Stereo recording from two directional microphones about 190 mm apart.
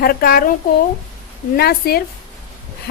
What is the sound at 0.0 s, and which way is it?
Speech, 55° left (ahead or behind).